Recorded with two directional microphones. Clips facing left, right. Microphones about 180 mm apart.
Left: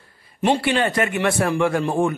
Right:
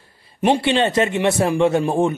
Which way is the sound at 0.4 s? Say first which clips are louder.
Right 2 dB; 20° right (ahead or behind).